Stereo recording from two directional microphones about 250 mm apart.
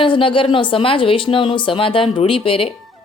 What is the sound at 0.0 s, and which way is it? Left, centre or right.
Speech, centre.